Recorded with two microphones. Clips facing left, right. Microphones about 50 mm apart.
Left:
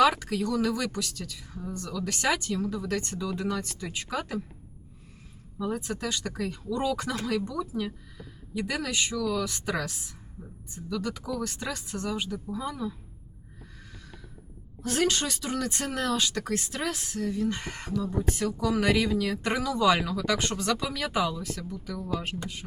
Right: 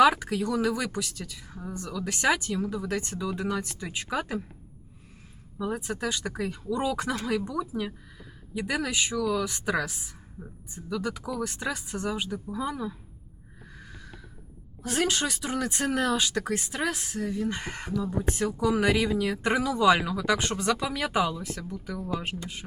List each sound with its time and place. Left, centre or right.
0.0 s speech: centre
5.5 s speech: centre
13.9 s a sound: centre
14.8 s speech: centre